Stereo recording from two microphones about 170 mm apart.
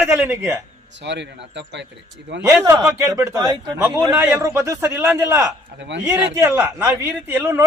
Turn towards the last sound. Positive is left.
turn(degrees=-10)  # may be behind; listen again after turning